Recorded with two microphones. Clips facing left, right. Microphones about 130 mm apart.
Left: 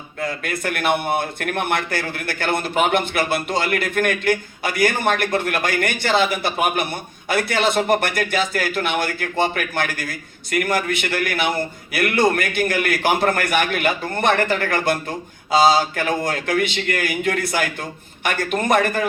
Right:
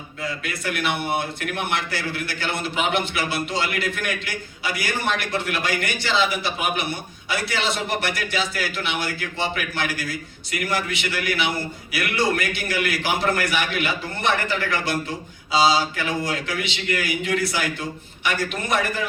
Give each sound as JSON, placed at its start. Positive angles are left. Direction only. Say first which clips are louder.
{"t": 0.2, "sound": "a man's voice", "louder": "left 5 dB", "side_deg": 50}